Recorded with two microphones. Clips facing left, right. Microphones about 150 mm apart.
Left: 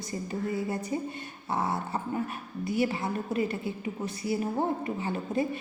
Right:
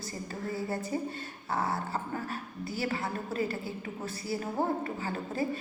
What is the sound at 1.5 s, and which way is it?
A woman's voice, 20° left (ahead or behind).